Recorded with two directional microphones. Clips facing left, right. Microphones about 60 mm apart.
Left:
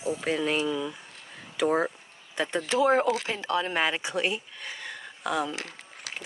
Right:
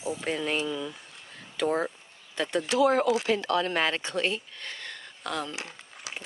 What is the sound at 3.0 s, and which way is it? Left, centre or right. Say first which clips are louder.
Speech: right 1 dB; left.